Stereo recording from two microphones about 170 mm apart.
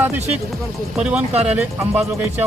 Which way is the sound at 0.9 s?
5° right (ahead or behind).